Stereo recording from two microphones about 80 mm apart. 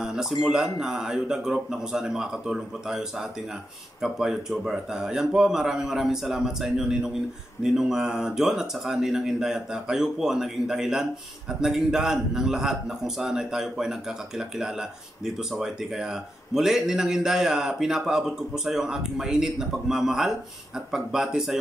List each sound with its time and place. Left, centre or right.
0.0 s speech: centre